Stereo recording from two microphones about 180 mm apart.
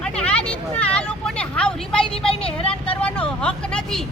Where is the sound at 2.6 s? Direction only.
30° left (ahead or behind).